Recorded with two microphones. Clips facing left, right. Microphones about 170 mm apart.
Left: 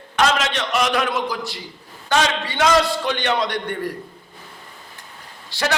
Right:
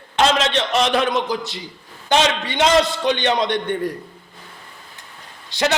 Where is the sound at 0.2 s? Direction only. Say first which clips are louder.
Right 2 dB; 25° right (ahead or behind).